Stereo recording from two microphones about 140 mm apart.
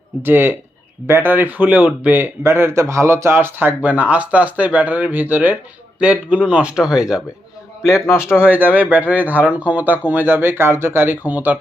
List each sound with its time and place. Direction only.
0.2 s speech: 15° right (ahead or behind)
7.9 s a man's voice: 20° left (ahead or behind)
8.7 s speech: 10° right (ahead or behind)